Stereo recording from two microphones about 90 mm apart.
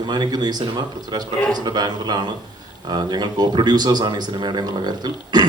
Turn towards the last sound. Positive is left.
turn(degrees=-50)  # may be behind; listen again after turning